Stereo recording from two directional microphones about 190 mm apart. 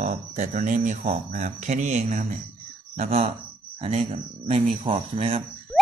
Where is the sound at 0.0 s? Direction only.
40° right (ahead or behind).